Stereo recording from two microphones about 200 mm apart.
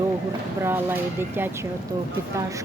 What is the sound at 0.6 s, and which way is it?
Speech, 10° right (ahead or behind).